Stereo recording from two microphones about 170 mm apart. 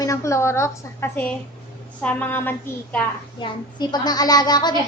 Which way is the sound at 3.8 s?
25° left (ahead or behind).